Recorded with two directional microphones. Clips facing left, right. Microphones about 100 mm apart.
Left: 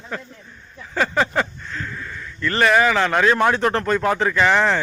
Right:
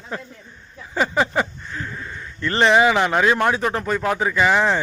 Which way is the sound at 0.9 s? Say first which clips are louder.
Even; 10° right (ahead or behind).